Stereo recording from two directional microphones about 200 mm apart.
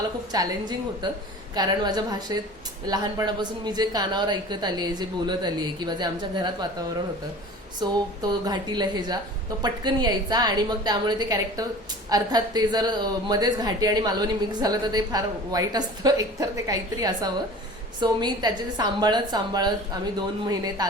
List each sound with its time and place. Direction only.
0.3 s speech: 20° right (ahead or behind)